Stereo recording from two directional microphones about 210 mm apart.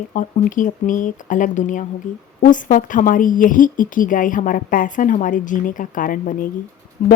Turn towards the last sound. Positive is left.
turn(degrees=40)  # may be behind; listen again after turning